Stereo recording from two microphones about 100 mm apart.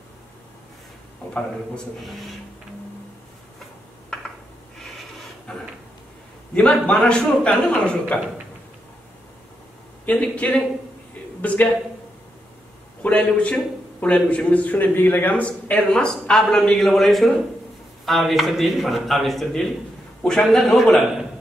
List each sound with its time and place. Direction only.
5.5 s a sound: 10° left (ahead or behind)
6.5 s a man's voice: 10° left (ahead or behind)
10.0 s a man's voice: 10° left (ahead or behind)
13.0 s a man's voice: 10° left (ahead or behind)